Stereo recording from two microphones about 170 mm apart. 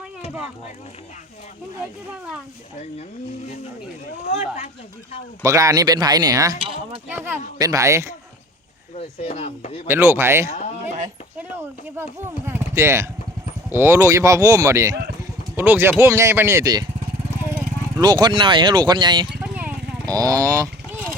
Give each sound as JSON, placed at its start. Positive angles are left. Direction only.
{"t": 4.3, "sound": "speech", "side_deg": 40}
{"t": 5.4, "sound": "speech", "side_deg": -20}
{"t": 6.6, "sound": "speech", "side_deg": -35}
{"t": 7.3, "sound": "speech", "side_deg": -20}
{"t": 9.0, "sound": "speech", "side_deg": 40}
{"t": 9.8, "sound": "speech", "side_deg": -15}
{"t": 11.9, "sound": "speech", "side_deg": -15}
{"t": 19.4, "sound": "vehicle", "side_deg": -10}
{"t": 20.1, "sound": "speech", "side_deg": -20}